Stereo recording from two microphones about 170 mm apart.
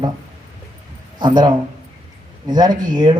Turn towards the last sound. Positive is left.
turn(degrees=-25)  # may be behind; listen again after turning